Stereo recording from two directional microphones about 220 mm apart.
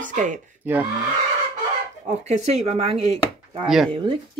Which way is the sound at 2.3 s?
30° right (ahead or behind).